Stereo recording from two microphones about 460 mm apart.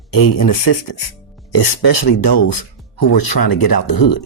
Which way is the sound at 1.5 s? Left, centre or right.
Left.